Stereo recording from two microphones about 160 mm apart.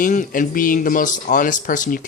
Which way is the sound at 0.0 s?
55° left (ahead or behind).